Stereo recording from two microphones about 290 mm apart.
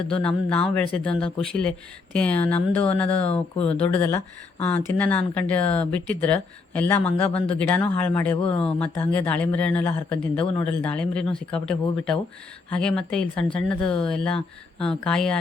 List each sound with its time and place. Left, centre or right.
0.1 s speech: centre
3.2 s speech: centre
3.7 s speech: centre
8.4 s speech: centre
9.0 s speech: centre
10.4 s speech: centre
10.7 s speech: centre